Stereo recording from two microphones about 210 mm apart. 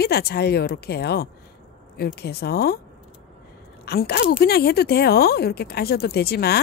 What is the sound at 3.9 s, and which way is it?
Speech, 50° left (ahead or behind).